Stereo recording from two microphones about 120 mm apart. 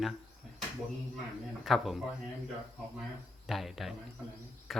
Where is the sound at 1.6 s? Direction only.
Centre (ahead or behind).